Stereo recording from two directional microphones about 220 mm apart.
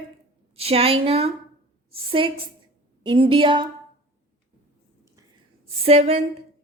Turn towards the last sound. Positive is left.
turn(degrees=-25)  # may be behind; listen again after turning